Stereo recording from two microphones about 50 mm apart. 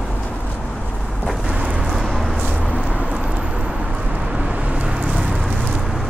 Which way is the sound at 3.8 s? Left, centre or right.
Right.